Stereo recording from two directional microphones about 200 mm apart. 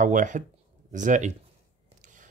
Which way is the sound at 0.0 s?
40° right (ahead or behind).